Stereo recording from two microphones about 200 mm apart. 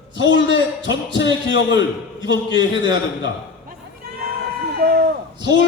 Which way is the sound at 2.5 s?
20° right (ahead or behind).